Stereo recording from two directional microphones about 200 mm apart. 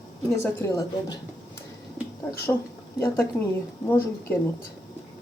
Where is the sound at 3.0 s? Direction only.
15° left (ahead or behind).